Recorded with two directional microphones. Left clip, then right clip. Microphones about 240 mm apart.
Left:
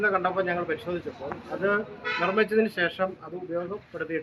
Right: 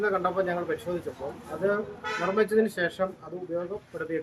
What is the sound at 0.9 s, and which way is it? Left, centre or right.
Speech, centre.